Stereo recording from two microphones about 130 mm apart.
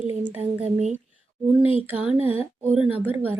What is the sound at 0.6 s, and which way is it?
Speech, 60° right (ahead or behind).